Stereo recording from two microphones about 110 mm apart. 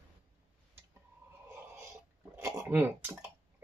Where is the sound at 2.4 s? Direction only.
25° right (ahead or behind).